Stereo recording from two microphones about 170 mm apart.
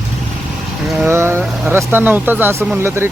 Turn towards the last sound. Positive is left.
turn(degrees=-15)  # may be behind; listen again after turning